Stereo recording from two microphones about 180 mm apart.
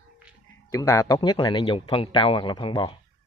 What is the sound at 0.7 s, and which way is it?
A man's voice, 15° left (ahead or behind).